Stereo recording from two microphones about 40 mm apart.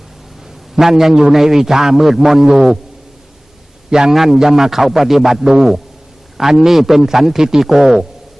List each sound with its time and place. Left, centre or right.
0.8 s a man's voice: centre
3.8 s a man's voice: centre